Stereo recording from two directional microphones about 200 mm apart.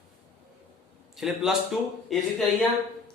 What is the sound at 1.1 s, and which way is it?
A man's voice, centre (ahead or behind).